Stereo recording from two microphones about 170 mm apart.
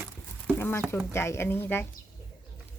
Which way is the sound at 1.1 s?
15° left (ahead or behind).